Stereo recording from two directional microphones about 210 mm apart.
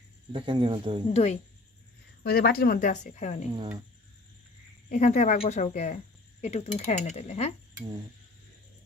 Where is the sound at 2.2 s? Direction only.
45° left (ahead or behind).